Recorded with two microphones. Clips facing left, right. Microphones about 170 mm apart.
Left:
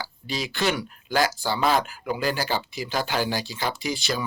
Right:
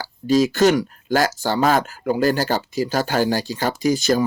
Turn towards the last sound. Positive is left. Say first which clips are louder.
# right 10 dB
turn(degrees=-45)  # may be behind; listen again after turning